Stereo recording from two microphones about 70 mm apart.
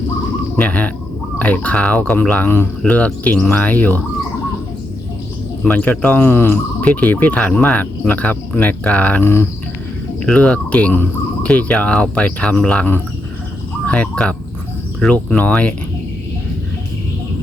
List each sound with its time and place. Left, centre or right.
0.5 s speech: left
5.6 s speech: left
6.8 s speech: left
10.3 s speech: centre
13.8 s speech: centre